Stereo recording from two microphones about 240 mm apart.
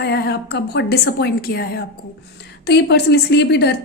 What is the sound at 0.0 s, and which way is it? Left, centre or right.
A woman's voice, left.